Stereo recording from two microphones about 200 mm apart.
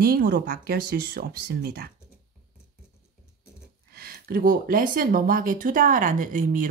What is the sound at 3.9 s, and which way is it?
Speech, 50° right (ahead or behind).